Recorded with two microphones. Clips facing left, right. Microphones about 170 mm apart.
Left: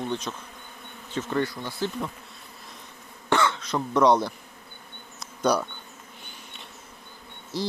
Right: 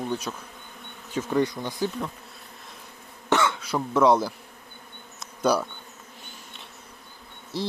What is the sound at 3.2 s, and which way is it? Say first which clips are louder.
Cough: even; 15° right (ahead or behind).